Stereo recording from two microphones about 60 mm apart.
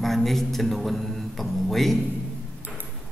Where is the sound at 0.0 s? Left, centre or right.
Centre.